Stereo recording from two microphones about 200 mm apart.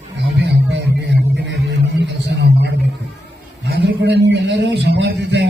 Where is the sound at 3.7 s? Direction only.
55° right (ahead or behind).